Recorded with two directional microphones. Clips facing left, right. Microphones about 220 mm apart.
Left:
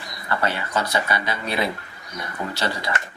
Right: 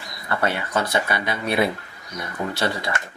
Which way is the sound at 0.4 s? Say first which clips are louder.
Right 2 dB; 55° right (ahead or behind).